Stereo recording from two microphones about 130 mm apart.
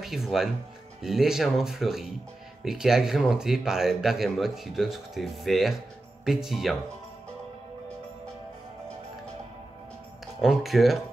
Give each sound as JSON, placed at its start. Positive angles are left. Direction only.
{"t": 0.0, "sound": "speech", "side_deg": 0}
{"t": 10.4, "sound": "speech", "side_deg": 0}